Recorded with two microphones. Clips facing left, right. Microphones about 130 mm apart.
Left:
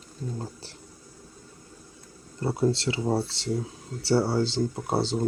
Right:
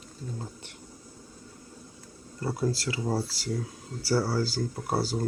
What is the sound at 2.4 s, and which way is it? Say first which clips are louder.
Speech: left 4 dB; 25° left (ahead or behind).